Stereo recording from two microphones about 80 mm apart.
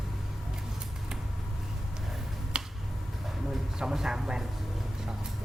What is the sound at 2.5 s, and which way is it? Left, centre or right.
Finger snapping, centre.